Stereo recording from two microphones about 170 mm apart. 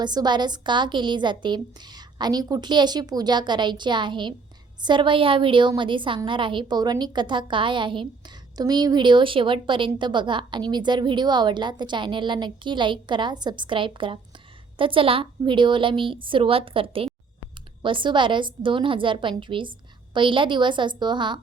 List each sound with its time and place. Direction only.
0.0 s a woman's voice: 25° right (ahead or behind)